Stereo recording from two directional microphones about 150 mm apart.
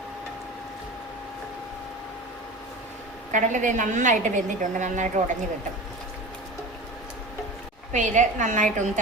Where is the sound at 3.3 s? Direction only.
55° right (ahead or behind).